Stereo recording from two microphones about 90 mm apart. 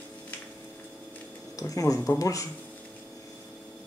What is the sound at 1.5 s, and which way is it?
Speech, 40° left (ahead or behind).